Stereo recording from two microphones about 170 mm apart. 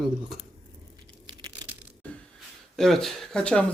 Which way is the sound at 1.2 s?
25° right (ahead or behind).